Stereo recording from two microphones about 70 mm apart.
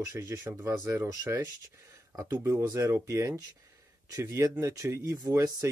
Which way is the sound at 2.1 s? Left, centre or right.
Right.